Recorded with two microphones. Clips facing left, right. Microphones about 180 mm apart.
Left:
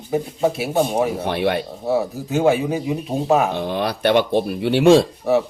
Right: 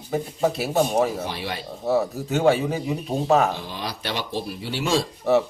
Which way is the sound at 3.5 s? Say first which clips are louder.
Left 8 dB; 60° left (ahead or behind).